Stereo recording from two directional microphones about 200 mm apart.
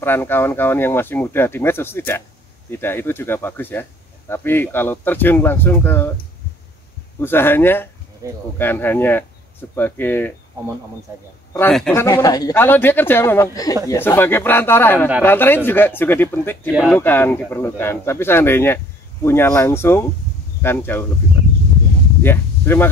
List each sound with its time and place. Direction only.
0.0 s speech: 10° left (ahead or behind)
7.2 s speech: 10° left (ahead or behind)
8.2 s speech: 15° right (ahead or behind)
8.5 s speech: 10° left (ahead or behind)
11.5 s speech: 5° left (ahead or behind)
12.0 s speech: 15° left (ahead or behind)
22.2 s speech: 10° left (ahead or behind)